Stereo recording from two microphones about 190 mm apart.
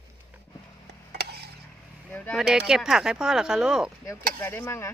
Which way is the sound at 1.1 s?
60° right (ahead or behind).